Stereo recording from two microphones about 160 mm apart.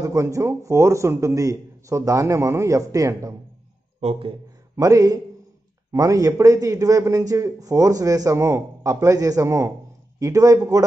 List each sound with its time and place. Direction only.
0.0 s a man's voice: 20° right (ahead or behind)
4.0 s speech: 35° right (ahead or behind)
4.7 s a man's voice: 20° right (ahead or behind)